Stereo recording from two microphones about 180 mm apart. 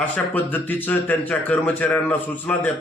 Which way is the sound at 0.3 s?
10° left (ahead or behind).